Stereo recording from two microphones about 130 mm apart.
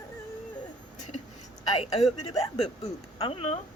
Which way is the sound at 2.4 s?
50° left (ahead or behind).